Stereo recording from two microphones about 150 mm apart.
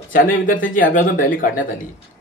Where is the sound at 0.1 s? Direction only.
65° left (ahead or behind).